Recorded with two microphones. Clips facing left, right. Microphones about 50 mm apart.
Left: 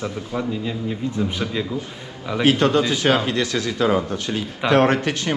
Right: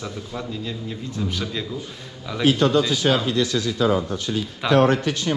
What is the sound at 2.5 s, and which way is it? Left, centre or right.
Speech, left.